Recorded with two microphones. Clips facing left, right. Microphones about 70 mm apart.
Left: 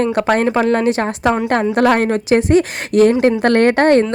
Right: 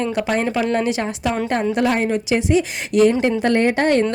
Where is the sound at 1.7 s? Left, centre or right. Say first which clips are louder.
Left 6 dB; left.